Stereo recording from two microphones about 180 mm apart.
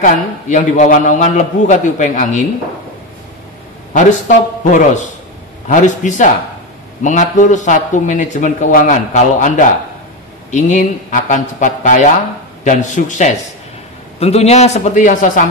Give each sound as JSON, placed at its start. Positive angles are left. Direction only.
{"t": 0.0, "sound": "speech", "side_deg": 40}
{"t": 4.6, "sound": "a man's voice", "side_deg": 45}